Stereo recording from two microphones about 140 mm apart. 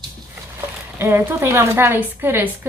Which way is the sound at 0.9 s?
15° right (ahead or behind).